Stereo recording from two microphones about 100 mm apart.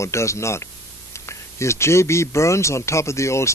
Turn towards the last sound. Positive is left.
turn(degrees=30)  # may be behind; listen again after turning